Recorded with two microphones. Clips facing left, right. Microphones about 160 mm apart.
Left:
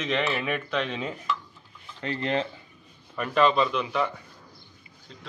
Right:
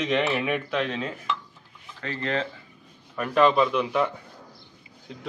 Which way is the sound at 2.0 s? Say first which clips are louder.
Left 1 dB; 20° left (ahead or behind).